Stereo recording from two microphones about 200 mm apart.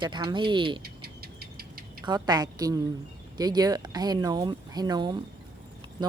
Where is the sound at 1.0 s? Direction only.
50° right (ahead or behind).